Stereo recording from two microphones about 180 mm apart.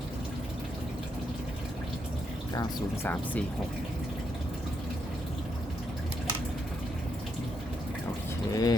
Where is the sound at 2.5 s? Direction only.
15° left (ahead or behind).